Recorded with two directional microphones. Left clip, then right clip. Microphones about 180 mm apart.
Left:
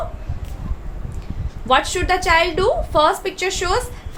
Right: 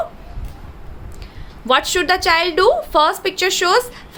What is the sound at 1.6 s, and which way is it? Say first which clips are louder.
A woman's voice: right 2 dB; 30° right (ahead or behind).